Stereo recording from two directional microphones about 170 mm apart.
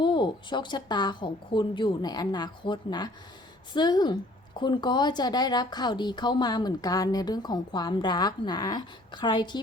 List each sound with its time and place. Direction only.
0.0 s speech: 25° left (ahead or behind)